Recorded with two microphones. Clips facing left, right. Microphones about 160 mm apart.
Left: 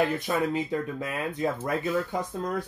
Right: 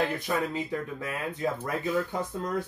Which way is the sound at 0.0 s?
15° left (ahead or behind).